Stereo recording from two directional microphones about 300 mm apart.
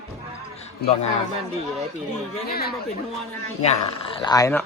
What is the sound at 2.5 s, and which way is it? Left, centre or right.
Speech, left.